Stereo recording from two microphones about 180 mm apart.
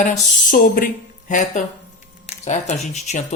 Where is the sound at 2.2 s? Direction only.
40° left (ahead or behind).